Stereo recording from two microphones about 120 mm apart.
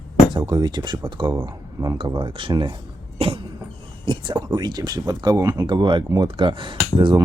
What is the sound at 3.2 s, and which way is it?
Speech, 55° right (ahead or behind).